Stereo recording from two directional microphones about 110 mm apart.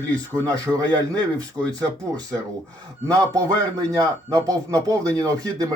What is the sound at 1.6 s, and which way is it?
Speech, 30° right (ahead or behind).